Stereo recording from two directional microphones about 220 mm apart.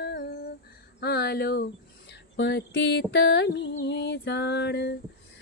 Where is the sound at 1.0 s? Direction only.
45° left (ahead or behind).